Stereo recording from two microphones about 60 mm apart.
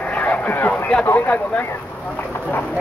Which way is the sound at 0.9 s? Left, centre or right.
Centre.